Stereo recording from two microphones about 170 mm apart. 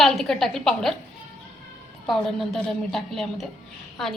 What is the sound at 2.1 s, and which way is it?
A woman's voice, centre (ahead or behind).